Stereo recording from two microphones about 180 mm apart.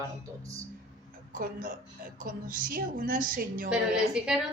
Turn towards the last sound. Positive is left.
turn(degrees=-5)  # may be behind; listen again after turning